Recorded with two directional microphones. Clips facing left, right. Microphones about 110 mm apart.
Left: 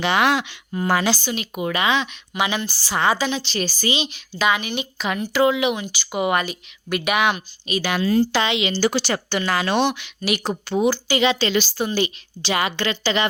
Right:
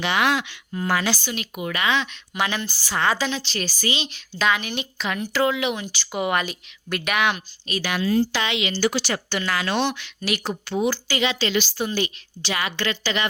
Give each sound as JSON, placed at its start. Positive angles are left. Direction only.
{"t": 0.0, "sound": "speech", "side_deg": 35}
{"t": 2.3, "sound": "a woman's voice", "side_deg": 5}
{"t": 2.9, "sound": "speech", "side_deg": 15}
{"t": 4.1, "sound": "speech", "side_deg": 5}
{"t": 7.8, "sound": "speech", "side_deg": 30}
{"t": 8.0, "sound": "speech", "side_deg": 45}
{"t": 8.4, "sound": "speech", "side_deg": 25}
{"t": 8.9, "sound": "speech", "side_deg": 35}
{"t": 10.4, "sound": "speech", "side_deg": 30}
{"t": 10.8, "sound": "speech", "side_deg": 15}
{"t": 11.2, "sound": "speech", "side_deg": 35}